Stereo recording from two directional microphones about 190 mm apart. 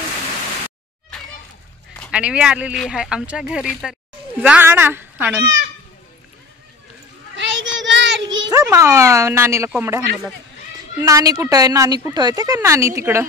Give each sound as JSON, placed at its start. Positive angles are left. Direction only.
{"t": 2.0, "sound": "speech", "side_deg": -5}
{"t": 7.3, "sound": "child singing", "side_deg": -75}
{"t": 8.5, "sound": "a woman's voice", "side_deg": -15}